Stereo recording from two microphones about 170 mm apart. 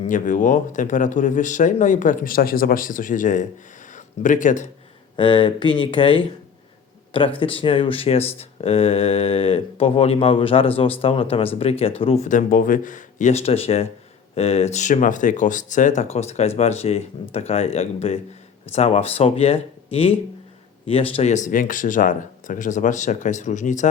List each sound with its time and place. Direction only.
0.0 s a man's voice: 50° left (ahead or behind)
5.1 s a man's voice: 30° left (ahead or behind); by 23.9 s 45° left (ahead or behind)